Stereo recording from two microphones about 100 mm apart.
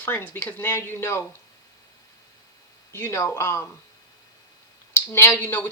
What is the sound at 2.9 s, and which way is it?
Speech, 25° left (ahead or behind).